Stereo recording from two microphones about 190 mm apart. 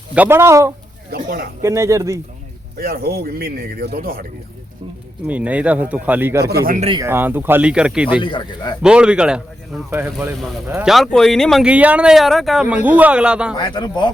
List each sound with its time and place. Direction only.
0.1 s speech: 10° right (ahead or behind)
1.1 s a man's voice: 45° right (ahead or behind)
1.6 s speech: 15° right (ahead or behind)
2.7 s a man's voice: 55° right (ahead or behind)
5.2 s speech: 10° right (ahead or behind)
6.5 s speech: 55° right (ahead or behind)
6.7 s speech: 30° right (ahead or behind)
7.0 s speech: 10° right (ahead or behind)
8.2 s a man's voice: 25° left (ahead or behind)
8.8 s speech: 5° right (ahead or behind)
13.5 s a man's voice: 25° left (ahead or behind)